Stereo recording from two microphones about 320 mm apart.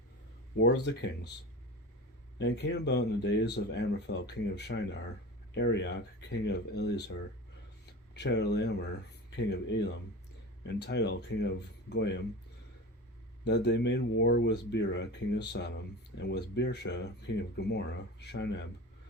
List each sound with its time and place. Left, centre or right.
0.6 s speech: left
2.4 s speech: left
13.4 s speech: left